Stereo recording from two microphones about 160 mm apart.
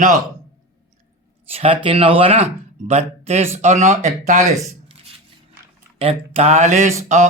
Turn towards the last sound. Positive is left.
turn(degrees=-45)  # may be behind; listen again after turning